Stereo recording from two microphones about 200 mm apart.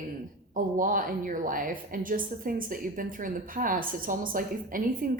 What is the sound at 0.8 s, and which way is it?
A woman's voice, 45° right (ahead or behind).